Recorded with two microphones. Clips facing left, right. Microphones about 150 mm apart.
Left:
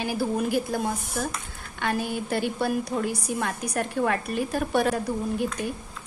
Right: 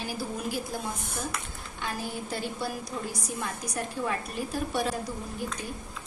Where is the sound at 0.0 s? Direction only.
60° left (ahead or behind).